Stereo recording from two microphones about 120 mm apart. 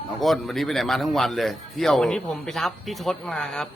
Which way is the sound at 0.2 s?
Centre (ahead or behind).